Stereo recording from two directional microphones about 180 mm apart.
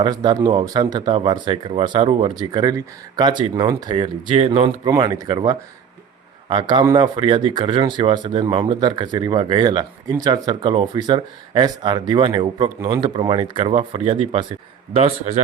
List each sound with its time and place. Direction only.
0.0 s speech: 25° right (ahead or behind)